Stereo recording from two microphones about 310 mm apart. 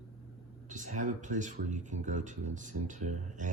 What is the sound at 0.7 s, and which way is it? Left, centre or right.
Speech, right.